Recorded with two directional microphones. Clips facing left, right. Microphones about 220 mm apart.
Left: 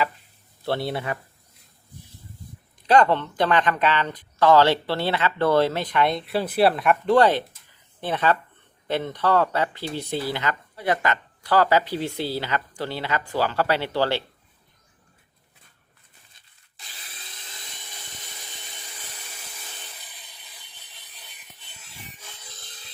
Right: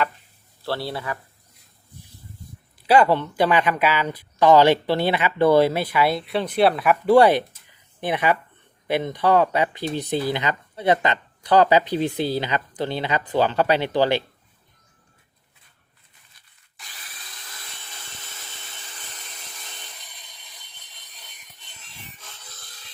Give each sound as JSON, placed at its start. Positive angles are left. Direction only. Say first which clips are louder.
{"t": 0.6, "sound": "a man's voice", "louder": "left 2 dB", "side_deg": 20}
{"t": 2.8, "sound": "speech", "louder": "right 1 dB", "side_deg": -10}
{"t": 16.3, "sound": "rub", "louder": "even", "side_deg": 25}
{"t": 17.4, "sound": "a sound", "louder": "right 1 dB", "side_deg": 20}